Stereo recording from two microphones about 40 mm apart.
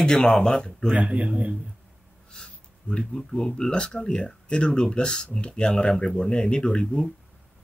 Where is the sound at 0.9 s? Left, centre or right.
Right.